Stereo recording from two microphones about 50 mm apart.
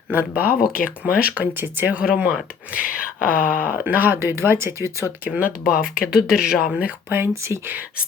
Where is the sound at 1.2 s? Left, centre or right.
Right.